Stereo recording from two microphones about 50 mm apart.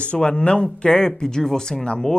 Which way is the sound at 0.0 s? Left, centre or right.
Left.